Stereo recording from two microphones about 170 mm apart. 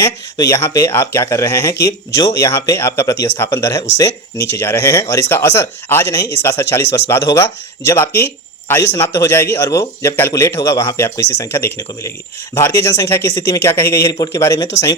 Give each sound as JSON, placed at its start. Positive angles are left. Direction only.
{"t": 0.0, "sound": "speech", "side_deg": 20}